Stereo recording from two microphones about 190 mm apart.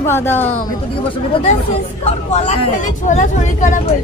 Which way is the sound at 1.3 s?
30° left (ahead or behind).